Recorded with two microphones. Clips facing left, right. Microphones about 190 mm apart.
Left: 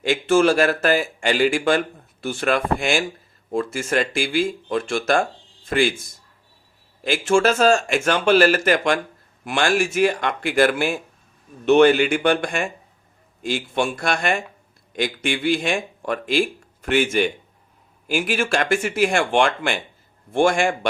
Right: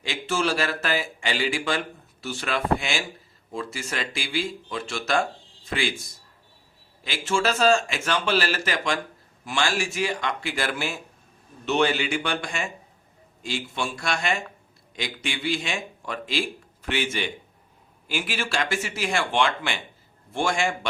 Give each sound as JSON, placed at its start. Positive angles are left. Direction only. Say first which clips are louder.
{"t": 0.0, "sound": "a man's voice", "louder": "left 10 dB", "side_deg": 55}
{"t": 7.0, "sound": "speech", "louder": "left 7 dB", "side_deg": 50}